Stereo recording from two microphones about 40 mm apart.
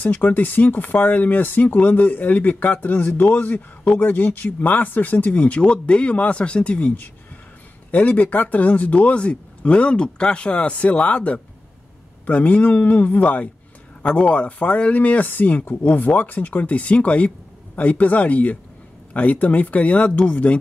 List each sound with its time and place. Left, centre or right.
0.0 s speech: left
5.6 s speech: left
7.9 s speech: left